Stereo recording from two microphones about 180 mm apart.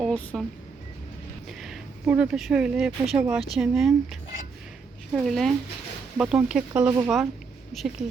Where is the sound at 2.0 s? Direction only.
5° right (ahead or behind).